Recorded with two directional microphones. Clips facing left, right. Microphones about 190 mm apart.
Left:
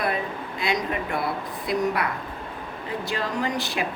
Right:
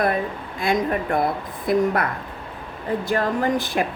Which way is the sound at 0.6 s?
50° right (ahead or behind).